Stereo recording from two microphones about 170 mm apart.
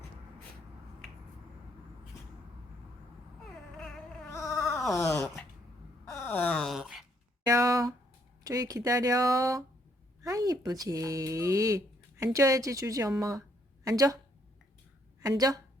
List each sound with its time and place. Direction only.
3.8 s baby cry: 5° left (ahead or behind)
4.9 s wail: 15° left (ahead or behind); by 7.0 s centre (ahead or behind)
7.4 s a sound: 20° right (ahead or behind)
8.4 s speech: 20° right (ahead or behind)
15.2 s speech: 20° right (ahead or behind)